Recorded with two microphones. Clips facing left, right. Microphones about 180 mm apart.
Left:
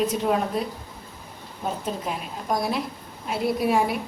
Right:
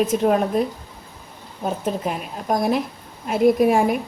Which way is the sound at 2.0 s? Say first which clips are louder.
Right 4 dB; 50° right (ahead or behind).